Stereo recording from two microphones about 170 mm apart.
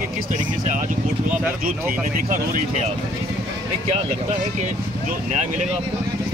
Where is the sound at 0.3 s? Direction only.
50° right (ahead or behind).